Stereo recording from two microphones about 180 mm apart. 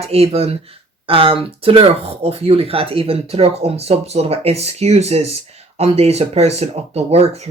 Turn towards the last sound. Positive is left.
turn(degrees=-35)  # may be behind; listen again after turning